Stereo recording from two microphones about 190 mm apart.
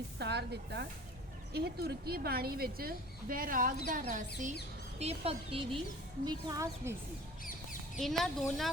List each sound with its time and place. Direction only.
0.2 s a woman's voice: 60° right (ahead or behind); by 4.3 s 45° right (ahead or behind)
4.9 s a woman's voice: 30° right (ahead or behind)
6.2 s speech: 15° right (ahead or behind)
7.4 s duck: 45° left (ahead or behind)
8.0 s speech: centre (ahead or behind)